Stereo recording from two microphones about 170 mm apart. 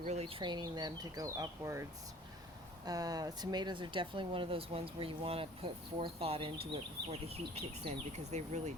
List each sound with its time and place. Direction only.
0.0 s speech: 40° right (ahead or behind); by 1.8 s 20° right (ahead or behind)
2.8 s speech: 20° right (ahead or behind); by 8.7 s 40° right (ahead or behind)